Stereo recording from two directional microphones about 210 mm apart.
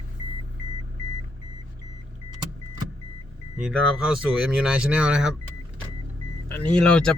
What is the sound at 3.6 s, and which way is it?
Speech, 5° right (ahead or behind).